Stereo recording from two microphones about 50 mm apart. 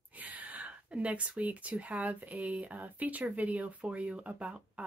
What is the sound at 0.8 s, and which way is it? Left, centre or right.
Speech, right.